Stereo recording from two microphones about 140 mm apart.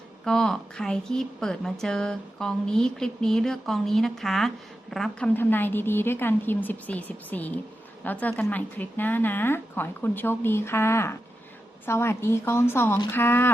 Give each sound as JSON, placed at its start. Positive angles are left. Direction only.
{"t": 0.3, "sound": "a woman's voice", "side_deg": 5}
{"t": 5.3, "sound": "speech", "side_deg": 15}